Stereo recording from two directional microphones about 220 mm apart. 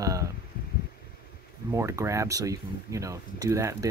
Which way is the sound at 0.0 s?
15° right (ahead or behind).